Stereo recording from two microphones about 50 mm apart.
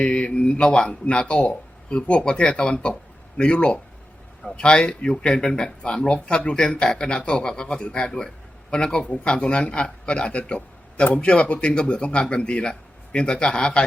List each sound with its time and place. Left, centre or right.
0.0 s speech: left